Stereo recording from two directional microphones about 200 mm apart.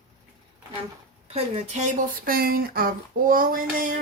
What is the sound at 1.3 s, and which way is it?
Speech, 35° right (ahead or behind).